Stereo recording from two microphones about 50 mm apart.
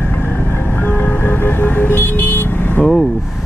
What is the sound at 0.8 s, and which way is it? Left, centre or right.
Vehicle, left.